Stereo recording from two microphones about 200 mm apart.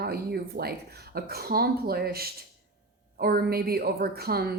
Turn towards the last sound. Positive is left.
turn(degrees=-50)  # may be behind; listen again after turning